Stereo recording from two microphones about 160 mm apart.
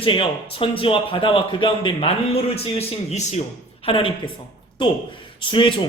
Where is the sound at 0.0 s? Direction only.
35° left (ahead or behind).